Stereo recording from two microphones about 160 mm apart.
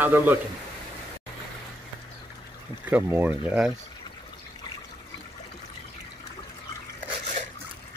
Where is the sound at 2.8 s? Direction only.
10° right (ahead or behind).